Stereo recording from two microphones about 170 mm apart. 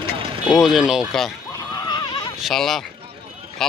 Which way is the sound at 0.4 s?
Centre (ahead or behind).